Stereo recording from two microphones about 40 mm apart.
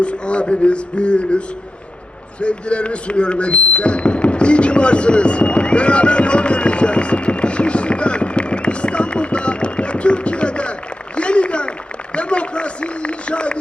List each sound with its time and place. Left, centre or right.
0.0 s speech: left
2.4 s a sound: left
12.1 s run: left